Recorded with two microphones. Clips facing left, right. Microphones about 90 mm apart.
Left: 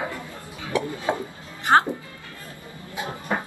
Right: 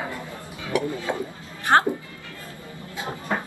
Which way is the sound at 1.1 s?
25° left (ahead or behind).